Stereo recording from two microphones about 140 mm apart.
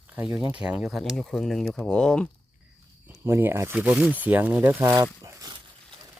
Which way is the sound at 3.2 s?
15° right (ahead or behind).